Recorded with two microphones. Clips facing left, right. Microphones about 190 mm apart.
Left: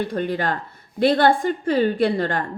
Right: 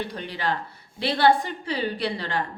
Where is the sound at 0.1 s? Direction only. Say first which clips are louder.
Left 6 dB; 50° left (ahead or behind).